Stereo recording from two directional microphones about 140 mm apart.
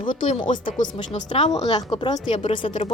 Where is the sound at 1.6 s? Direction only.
35° left (ahead or behind).